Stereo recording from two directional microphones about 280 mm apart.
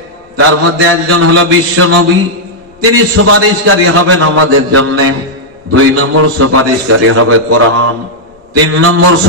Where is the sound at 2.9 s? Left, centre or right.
Right.